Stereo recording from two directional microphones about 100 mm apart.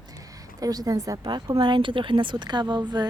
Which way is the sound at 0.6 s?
35° right (ahead or behind).